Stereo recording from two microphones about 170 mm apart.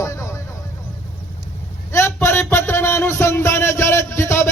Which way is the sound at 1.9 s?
15° left (ahead or behind).